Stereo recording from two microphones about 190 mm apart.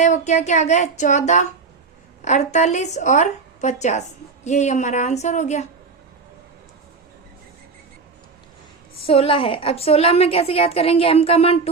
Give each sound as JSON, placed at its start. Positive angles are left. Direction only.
{"t": 0.0, "sound": "a woman's voice", "side_deg": 35}
{"t": 9.0, "sound": "a woman's voice", "side_deg": 30}